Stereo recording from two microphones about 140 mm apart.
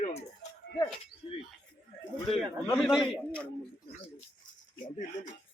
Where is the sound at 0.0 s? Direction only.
50° left (ahead or behind).